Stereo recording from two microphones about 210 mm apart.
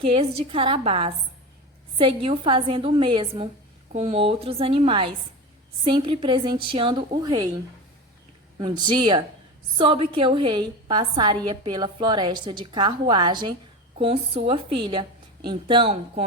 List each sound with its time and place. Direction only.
0.0 s a woman's voice: 25° right (ahead or behind)
8.5 s a woman's voice: 20° right (ahead or behind)